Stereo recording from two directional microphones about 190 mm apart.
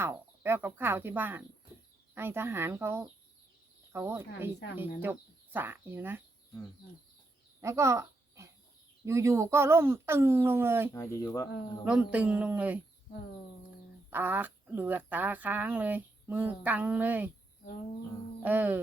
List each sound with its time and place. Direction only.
0.0 s speech: 10° right (ahead or behind)
7.6 s a sound: 15° right (ahead or behind)
9.0 s speech: 15° right (ahead or behind)
10.9 s speech: 15° left (ahead or behind)
11.9 s speech: 5° right (ahead or behind)
14.1 s speech: 10° right (ahead or behind)
18.4 s speech: 10° right (ahead or behind)